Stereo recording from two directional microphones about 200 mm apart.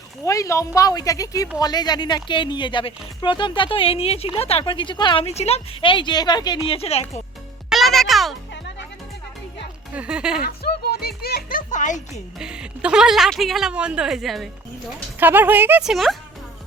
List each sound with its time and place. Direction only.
0.3 s speech: 15° left (ahead or behind); by 7.1 s 30° left (ahead or behind)
7.7 s music: centre (ahead or behind)
9.9 s speech: 5° right (ahead or behind)
10.4 s music: 50° left (ahead or behind)
12.4 s speech: 5° right (ahead or behind)